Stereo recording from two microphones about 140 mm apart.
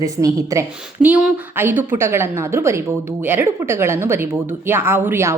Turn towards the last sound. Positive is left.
turn(degrees=-15)  # may be behind; listen again after turning